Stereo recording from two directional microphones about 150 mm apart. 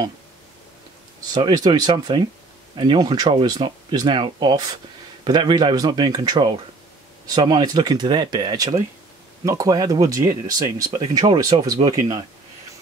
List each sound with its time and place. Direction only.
1.3 s speech: 30° right (ahead or behind)